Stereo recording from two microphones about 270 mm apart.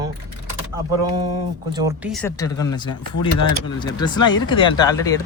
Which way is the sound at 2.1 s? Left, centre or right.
Centre.